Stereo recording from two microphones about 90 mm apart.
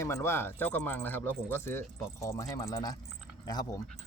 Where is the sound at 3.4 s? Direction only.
45° left (ahead or behind).